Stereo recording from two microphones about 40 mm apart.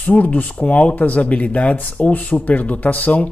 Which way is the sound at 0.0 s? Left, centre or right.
Left.